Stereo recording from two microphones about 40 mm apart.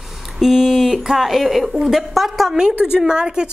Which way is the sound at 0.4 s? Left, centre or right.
Centre.